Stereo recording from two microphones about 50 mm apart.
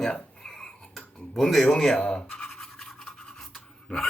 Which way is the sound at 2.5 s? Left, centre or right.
Centre.